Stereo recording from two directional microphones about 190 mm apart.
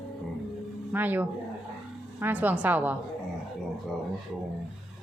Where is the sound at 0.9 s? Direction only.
10° right (ahead or behind).